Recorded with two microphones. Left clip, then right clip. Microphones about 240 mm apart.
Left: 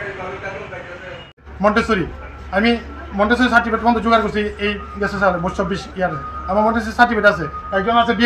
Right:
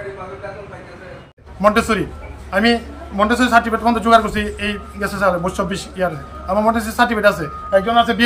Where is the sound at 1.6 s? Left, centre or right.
Centre.